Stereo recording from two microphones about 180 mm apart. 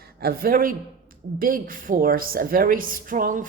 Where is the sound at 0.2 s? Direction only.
55° right (ahead or behind).